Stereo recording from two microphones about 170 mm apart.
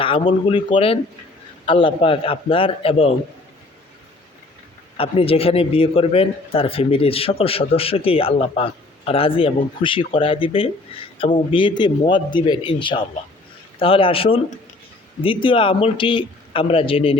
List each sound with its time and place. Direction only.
0.0 s speech: 30° left (ahead or behind)
4.9 s speech: 35° left (ahead or behind)